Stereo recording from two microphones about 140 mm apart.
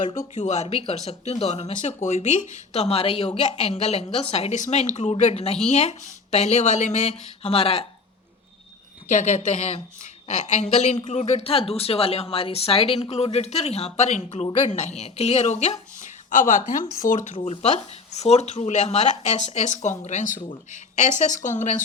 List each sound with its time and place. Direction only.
0.1 s a woman's voice: 55° left (ahead or behind)
9.0 s a woman's voice: 60° left (ahead or behind)
17.3 s a woman's voice: 45° left (ahead or behind)